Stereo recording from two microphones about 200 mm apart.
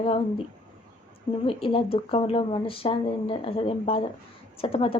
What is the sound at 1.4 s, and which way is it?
Speech, 25° left (ahead or behind).